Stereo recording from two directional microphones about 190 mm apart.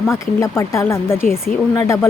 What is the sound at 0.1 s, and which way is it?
Speech, 15° left (ahead or behind).